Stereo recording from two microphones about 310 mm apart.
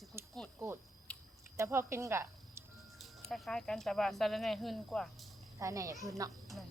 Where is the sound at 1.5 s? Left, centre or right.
Centre.